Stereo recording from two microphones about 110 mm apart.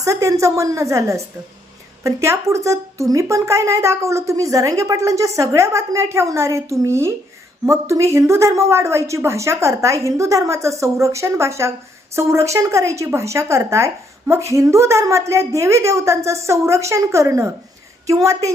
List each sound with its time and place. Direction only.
0.0 s a woman's voice: 25° right (ahead or behind)